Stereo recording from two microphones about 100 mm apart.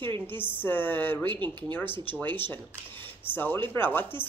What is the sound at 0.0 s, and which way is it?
Speech, 20° left (ahead or behind).